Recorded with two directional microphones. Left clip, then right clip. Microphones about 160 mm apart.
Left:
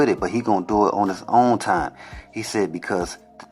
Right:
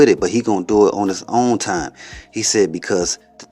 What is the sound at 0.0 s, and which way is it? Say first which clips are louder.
Speech: right 7 dB; 30° right (ahead or behind).